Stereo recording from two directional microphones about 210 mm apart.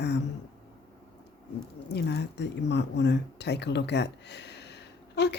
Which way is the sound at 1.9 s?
50° left (ahead or behind).